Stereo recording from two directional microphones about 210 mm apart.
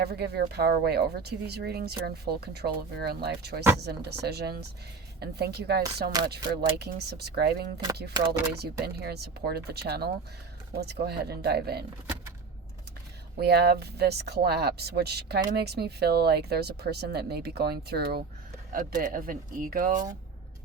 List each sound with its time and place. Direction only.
0.0 s speech: 50° right (ahead or behind)
8.1 s speech: 20° right (ahead or behind)
8.5 s speech: 50° right (ahead or behind)
13.4 s speech: 50° right (ahead or behind)